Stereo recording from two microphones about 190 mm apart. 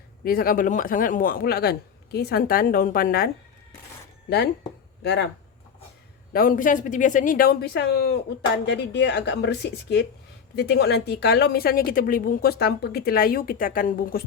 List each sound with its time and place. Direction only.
0.3 s a woman's voice: 50° left (ahead or behind)
6.3 s a woman's voice: 45° left (ahead or behind)